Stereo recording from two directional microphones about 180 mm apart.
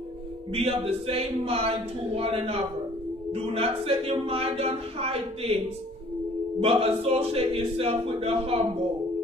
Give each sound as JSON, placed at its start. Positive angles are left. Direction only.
{"t": 0.5, "sound": "speech", "side_deg": -30}
{"t": 6.6, "sound": "speech", "side_deg": -35}